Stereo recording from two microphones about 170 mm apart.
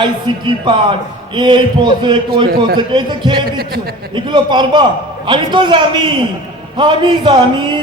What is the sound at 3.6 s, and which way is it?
Speech, 65° right (ahead or behind).